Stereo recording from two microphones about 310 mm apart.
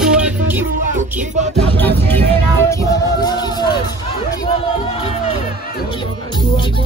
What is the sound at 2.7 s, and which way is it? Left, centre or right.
Speech, centre.